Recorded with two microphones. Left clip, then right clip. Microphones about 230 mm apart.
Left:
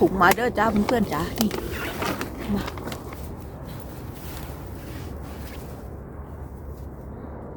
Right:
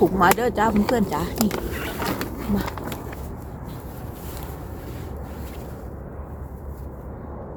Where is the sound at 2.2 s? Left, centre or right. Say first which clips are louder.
Right 2 dB; centre.